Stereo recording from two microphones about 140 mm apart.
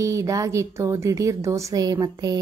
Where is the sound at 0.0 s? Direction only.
20° right (ahead or behind).